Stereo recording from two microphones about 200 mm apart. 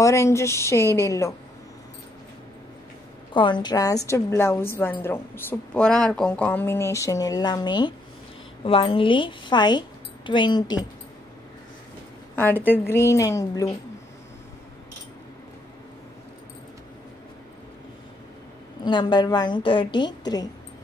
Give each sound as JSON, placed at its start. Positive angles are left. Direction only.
{"t": 0.0, "sound": "a woman's voice", "side_deg": 15}
{"t": 3.3, "sound": "a woman's voice", "side_deg": 25}
{"t": 12.6, "sound": "a woman's voice", "side_deg": 10}
{"t": 18.9, "sound": "speech", "side_deg": 20}